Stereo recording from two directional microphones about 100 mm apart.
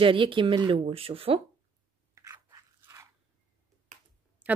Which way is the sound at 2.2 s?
30° right (ahead or behind).